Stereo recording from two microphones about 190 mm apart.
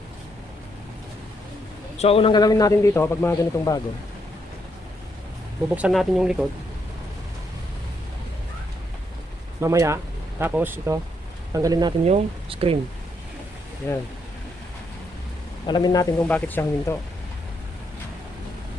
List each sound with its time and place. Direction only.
2.0 s a man's voice: 30° left (ahead or behind); by 3.8 s 15° left (ahead or behind)
5.6 s speech: 5° right (ahead or behind)
9.6 s speech: 15° right (ahead or behind)
12.0 s speech: 30° right (ahead or behind)
13.8 s speech: 15° left (ahead or behind)
15.6 s a man's voice: 20° left (ahead or behind)
16.1 s speech: 5° left (ahead or behind)